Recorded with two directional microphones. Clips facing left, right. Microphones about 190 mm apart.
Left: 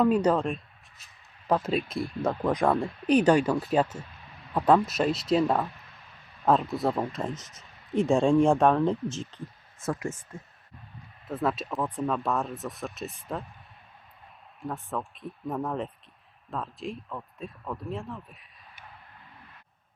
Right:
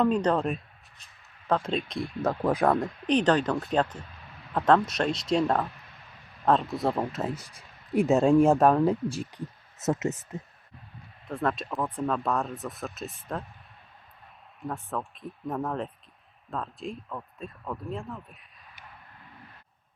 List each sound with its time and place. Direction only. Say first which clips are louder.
0.0 s speech: left 1 dB; 5° left (ahead or behind)
0.4 s a sound: right 1 dB; 5° right (ahead or behind)
1.5 s speech: left 1 dB; 5° left (ahead or behind); by 9.4 s 10° right (ahead or behind)
9.8 s speech: right 4 dB; 20° right (ahead or behind)
11.3 s speech: even; 5° left (ahead or behind)
14.6 s speech: even; centre (ahead or behind)